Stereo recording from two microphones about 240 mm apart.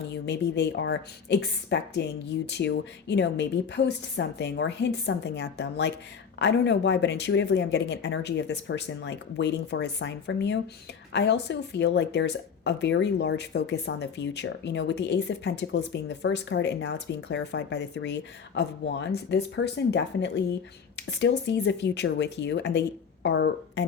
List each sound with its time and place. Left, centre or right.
0.1 s speech: left